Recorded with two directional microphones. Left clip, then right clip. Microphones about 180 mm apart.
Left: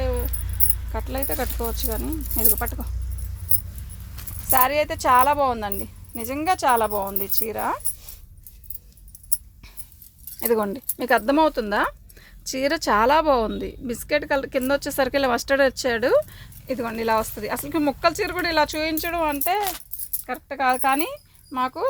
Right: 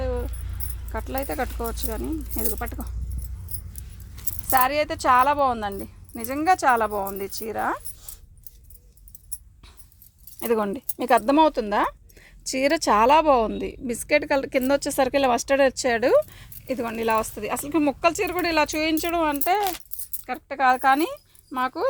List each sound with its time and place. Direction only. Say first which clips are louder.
0.0 s keys jangling: left 1 dB; 45° right (ahead or behind)
0.9 s speech: right 1 dB; 40° right (ahead or behind)
4.4 s speech: left 1 dB; 35° right (ahead or behind)
10.4 s speech: left 1 dB; 30° right (ahead or behind); by 21.8 s 50° right (ahead or behind)